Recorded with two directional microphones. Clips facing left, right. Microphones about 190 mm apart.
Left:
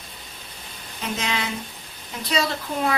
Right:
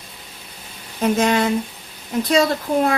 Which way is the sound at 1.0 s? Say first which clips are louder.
Right 11 dB; 50° right (ahead or behind).